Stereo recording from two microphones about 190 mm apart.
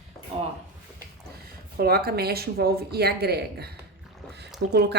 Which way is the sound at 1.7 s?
50° right (ahead or behind).